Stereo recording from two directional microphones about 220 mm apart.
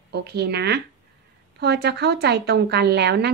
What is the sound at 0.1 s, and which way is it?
A woman's voice, 50° right (ahead or behind).